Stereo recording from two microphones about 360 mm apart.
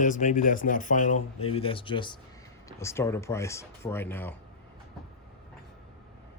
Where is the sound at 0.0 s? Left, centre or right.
Left.